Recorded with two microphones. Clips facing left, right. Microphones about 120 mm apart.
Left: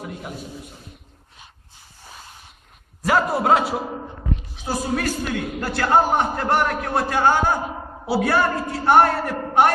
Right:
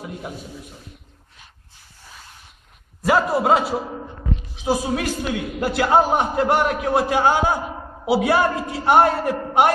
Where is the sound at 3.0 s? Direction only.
Centre (ahead or behind).